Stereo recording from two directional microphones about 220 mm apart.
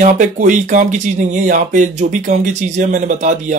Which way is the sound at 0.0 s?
35° right (ahead or behind).